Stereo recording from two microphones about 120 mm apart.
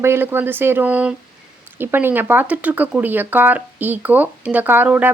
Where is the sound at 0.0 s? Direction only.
20° right (ahead or behind).